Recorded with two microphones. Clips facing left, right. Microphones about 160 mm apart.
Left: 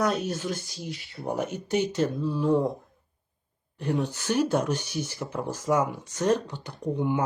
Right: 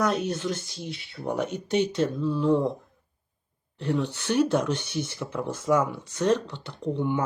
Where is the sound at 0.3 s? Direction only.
65° right (ahead or behind).